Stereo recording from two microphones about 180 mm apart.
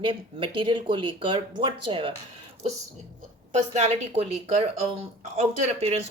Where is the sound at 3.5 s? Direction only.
40° right (ahead or behind).